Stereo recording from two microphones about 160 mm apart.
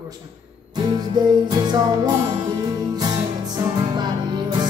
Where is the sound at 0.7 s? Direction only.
25° right (ahead or behind).